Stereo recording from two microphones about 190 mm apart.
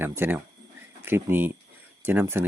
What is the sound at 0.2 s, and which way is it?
Speech, 10° right (ahead or behind).